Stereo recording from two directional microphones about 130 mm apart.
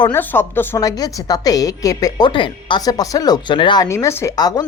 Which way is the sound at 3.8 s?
20° left (ahead or behind).